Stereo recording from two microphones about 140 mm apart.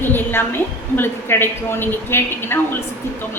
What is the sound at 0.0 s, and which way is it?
A woman's voice, 15° left (ahead or behind).